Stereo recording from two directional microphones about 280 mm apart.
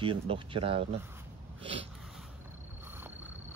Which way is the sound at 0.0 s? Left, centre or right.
Centre.